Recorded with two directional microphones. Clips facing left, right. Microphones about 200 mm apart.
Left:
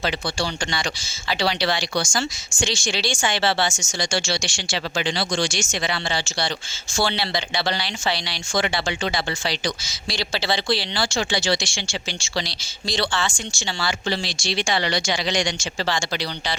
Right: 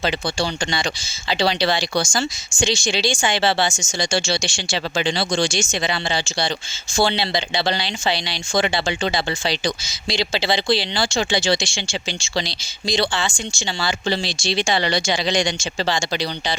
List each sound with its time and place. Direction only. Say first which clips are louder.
0.0 s speech: right 3 dB; 25° right (ahead or behind)